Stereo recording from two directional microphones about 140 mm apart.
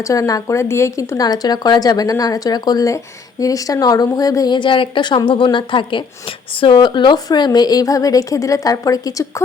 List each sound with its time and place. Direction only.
0.0 s speech: 25° left (ahead or behind)